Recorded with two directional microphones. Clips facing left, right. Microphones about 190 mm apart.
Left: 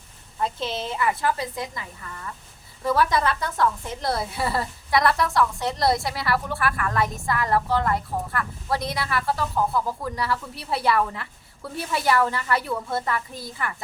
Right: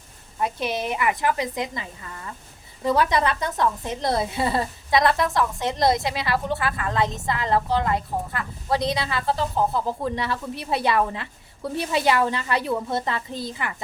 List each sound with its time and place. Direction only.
0.3 s a woman's voice: 15° right (ahead or behind)